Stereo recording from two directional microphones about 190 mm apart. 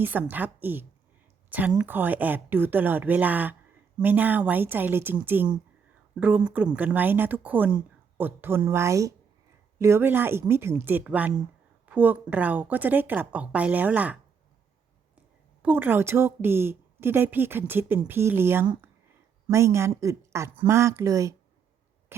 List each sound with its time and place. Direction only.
0.0 s a woman's voice: 10° right (ahead or behind)
15.6 s a woman's voice: 10° right (ahead or behind)